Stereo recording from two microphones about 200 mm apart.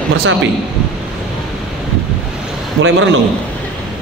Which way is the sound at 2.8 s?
75° right (ahead or behind).